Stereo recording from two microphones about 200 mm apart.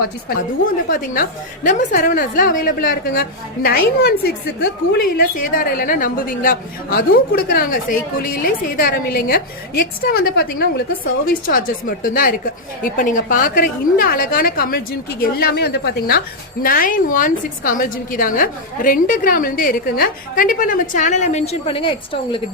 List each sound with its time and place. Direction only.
0.9 s a woman's voice: 45° left (ahead or behind); by 22.4 s 25° left (ahead or behind)